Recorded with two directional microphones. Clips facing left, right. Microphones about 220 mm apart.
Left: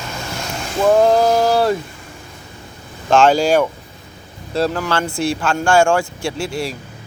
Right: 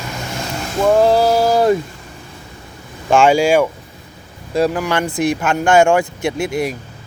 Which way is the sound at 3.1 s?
10° right (ahead or behind).